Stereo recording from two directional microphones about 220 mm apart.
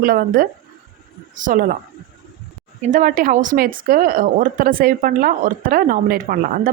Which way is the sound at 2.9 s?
35° right (ahead or behind).